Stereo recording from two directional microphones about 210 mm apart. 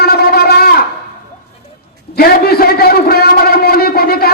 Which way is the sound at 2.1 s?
45° left (ahead or behind).